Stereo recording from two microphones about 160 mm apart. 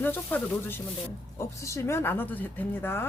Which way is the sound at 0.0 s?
10° left (ahead or behind).